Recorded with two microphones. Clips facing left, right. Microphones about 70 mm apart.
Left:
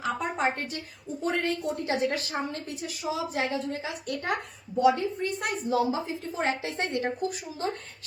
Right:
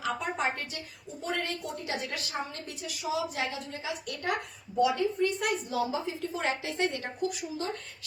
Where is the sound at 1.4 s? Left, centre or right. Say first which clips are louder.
Left 6 dB; left.